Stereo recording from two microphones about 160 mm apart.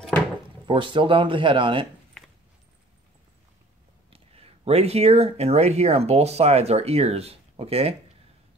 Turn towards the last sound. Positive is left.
turn(degrees=-40)  # may be behind; listen again after turning